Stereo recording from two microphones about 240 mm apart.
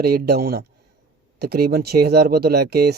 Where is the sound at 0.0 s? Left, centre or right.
Right.